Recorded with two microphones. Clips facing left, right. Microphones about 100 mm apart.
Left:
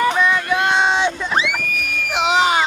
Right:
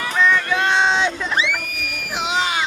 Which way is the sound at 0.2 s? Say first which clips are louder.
Left 1 dB; 10° left (ahead or behind).